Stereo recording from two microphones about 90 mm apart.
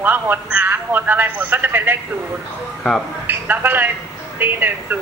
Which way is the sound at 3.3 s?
25° right (ahead or behind).